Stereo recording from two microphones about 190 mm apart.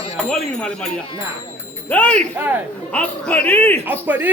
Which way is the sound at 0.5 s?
5° left (ahead or behind).